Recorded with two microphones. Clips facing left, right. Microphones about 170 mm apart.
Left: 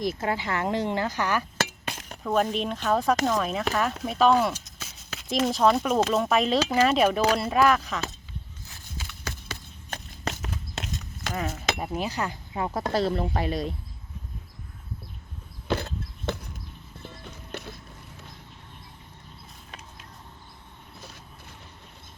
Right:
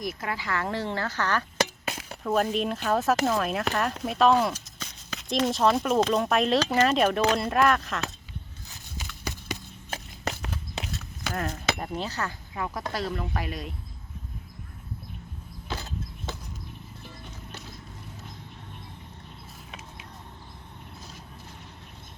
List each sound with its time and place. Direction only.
0.0 s speech: 25° left (ahead or behind); by 1.7 s 10° left (ahead or behind)
1.9 s speech: 5° right (ahead or behind)
9.0 s horse: 15° right (ahead or behind)
10.2 s walk: centre (ahead or behind)
11.3 s speech: centre (ahead or behind)
12.5 s speech: 25° left (ahead or behind)
15.6 s a sound: 60° left (ahead or behind)
17.5 s vehicle: 60° left (ahead or behind)